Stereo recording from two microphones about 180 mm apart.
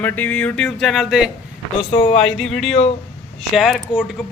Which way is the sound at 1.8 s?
30° left (ahead or behind).